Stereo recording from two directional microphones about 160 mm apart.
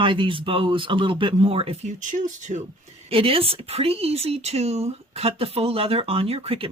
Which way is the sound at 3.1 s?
35° right (ahead or behind).